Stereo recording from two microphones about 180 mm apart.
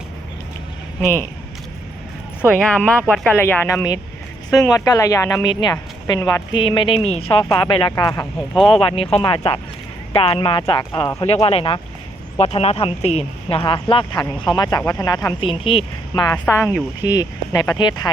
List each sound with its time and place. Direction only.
2.5 s a woman's voice: 5° left (ahead or behind); by 8.3 s 20° left (ahead or behind)
8.4 s speech: centre (ahead or behind)
8.9 s a woman's voice: 30° left (ahead or behind)
15.4 s a woman's voice: 30° left (ahead or behind)